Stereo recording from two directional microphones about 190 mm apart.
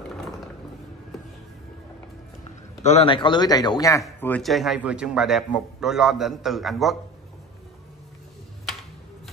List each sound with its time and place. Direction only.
2.8 s a man's voice: 35° left (ahead or behind)
4.2 s a man's voice: 5° left (ahead or behind)